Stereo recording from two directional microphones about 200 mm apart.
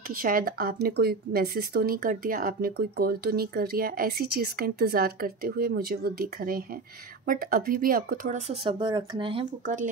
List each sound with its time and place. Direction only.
0.1 s speech: 45° right (ahead or behind); by 9.5 s 25° right (ahead or behind)